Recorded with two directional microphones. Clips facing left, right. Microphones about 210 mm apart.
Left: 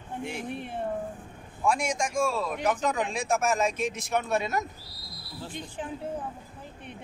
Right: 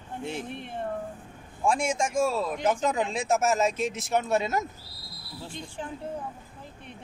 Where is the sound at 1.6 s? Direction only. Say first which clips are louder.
Right 1 dB; 25° right (ahead or behind).